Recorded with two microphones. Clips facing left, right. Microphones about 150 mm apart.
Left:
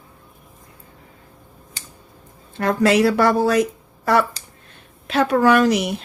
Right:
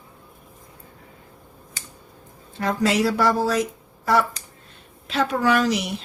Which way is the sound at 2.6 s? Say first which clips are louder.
Left 5 dB; 60° left (ahead or behind).